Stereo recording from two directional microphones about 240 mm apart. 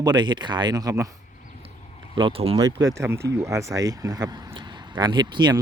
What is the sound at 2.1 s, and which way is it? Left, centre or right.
Speech, right.